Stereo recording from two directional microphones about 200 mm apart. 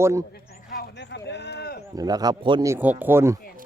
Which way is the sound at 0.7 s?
55° left (ahead or behind).